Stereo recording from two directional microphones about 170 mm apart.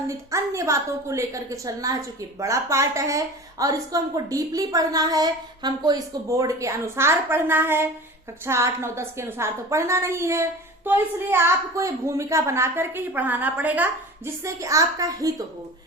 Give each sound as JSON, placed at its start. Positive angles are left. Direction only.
{"t": 0.1, "sound": "a woman's voice", "side_deg": -20}